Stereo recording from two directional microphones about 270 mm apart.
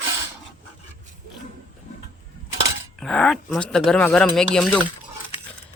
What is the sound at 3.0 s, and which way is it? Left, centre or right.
Speech, centre.